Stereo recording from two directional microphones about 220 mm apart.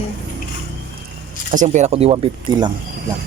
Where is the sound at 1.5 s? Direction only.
35° right (ahead or behind).